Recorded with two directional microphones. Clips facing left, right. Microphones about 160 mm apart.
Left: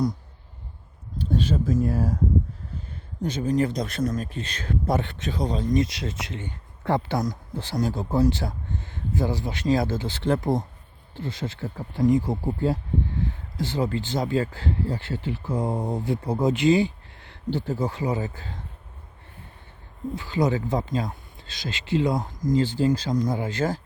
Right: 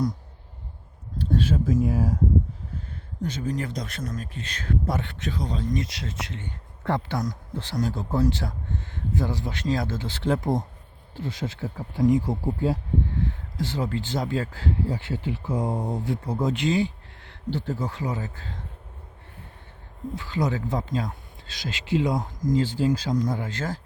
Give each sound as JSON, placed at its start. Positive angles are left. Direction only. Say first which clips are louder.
{"t": 1.2, "sound": "a sound", "louder": "even", "side_deg": -5}
{"t": 1.6, "sound": "speech", "louder": "even", "side_deg": -15}
{"t": 3.2, "sound": "speech", "louder": "left 6 dB", "side_deg": 20}
{"t": 13.6, "sound": "speech", "louder": "left 2 dB", "side_deg": 0}
{"t": 15.7, "sound": "speech", "louder": "left 2 dB", "side_deg": 5}
{"t": 20.1, "sound": "speech", "louder": "left 3 dB", "side_deg": 5}
{"t": 23.4, "sound": "speech", "louder": "left 5 dB", "side_deg": 10}